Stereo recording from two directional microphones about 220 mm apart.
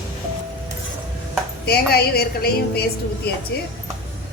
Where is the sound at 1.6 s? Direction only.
45° left (ahead or behind).